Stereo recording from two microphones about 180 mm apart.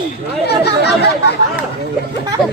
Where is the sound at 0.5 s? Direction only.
65° left (ahead or behind).